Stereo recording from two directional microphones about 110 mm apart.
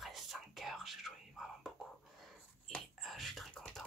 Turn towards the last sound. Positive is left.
turn(degrees=5)  # may be behind; listen again after turning